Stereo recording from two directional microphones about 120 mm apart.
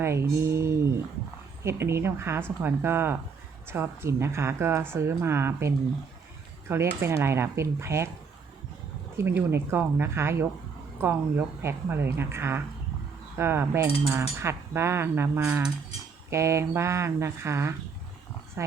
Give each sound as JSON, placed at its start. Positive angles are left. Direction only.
{"t": 0.0, "sound": "speech", "side_deg": -20}
{"t": 9.1, "sound": "speech", "side_deg": -20}
{"t": 15.4, "sound": "speech", "side_deg": -10}
{"t": 16.3, "sound": "speech", "side_deg": -25}